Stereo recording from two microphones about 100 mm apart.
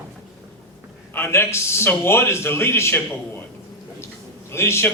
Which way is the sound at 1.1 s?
25° left (ahead or behind).